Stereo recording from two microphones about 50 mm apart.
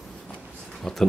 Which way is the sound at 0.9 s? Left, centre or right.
Centre.